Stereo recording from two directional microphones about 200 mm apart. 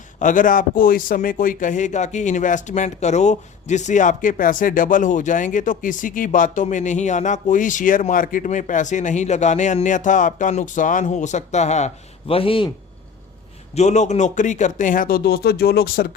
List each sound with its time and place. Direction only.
0.2 s a man's voice: 40° left (ahead or behind); by 12.7 s 25° left (ahead or behind)
13.7 s speech: 35° left (ahead or behind)